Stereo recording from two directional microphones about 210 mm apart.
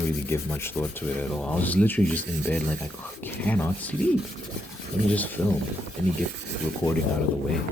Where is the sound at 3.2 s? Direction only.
10° left (ahead or behind).